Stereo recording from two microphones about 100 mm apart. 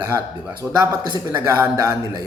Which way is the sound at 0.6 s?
40° right (ahead or behind).